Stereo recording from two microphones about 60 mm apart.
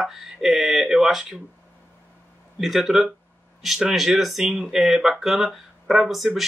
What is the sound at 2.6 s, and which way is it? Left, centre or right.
Speech, centre.